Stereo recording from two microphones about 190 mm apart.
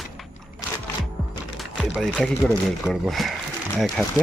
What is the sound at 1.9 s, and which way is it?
Speech, centre (ahead or behind).